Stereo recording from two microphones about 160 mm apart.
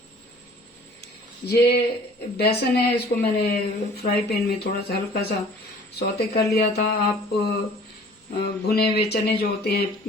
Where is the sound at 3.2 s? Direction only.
80° left.